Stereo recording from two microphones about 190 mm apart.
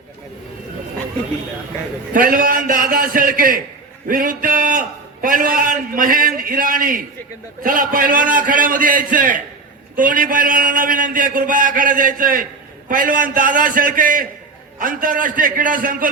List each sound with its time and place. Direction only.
2.1 s a man's voice: 45° right (ahead or behind)